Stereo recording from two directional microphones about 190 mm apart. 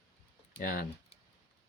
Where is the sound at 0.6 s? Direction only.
50° left (ahead or behind).